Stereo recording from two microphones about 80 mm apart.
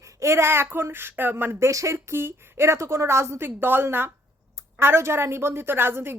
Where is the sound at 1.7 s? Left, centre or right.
Right.